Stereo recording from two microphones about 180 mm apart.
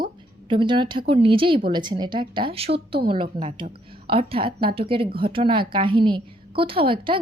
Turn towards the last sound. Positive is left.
turn(degrees=-30)  # may be behind; listen again after turning